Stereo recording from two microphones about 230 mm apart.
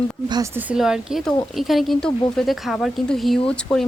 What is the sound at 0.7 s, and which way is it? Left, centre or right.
Speech, centre.